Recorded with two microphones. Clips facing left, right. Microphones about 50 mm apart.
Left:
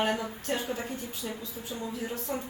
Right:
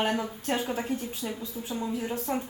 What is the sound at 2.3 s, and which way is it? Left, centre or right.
Speech, right.